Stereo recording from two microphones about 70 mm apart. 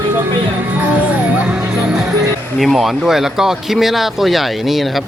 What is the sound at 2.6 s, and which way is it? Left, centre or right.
Speech, centre.